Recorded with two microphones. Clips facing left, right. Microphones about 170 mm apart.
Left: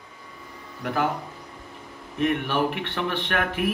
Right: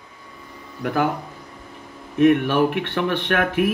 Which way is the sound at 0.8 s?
55° right (ahead or behind).